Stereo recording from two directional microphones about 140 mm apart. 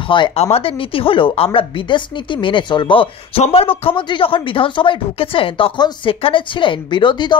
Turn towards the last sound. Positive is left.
turn(degrees=35)  # may be behind; listen again after turning